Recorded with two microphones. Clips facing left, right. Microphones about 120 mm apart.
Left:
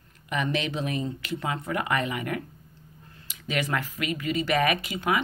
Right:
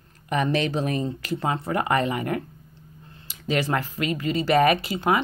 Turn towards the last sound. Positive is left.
turn(degrees=-35)  # may be behind; listen again after turning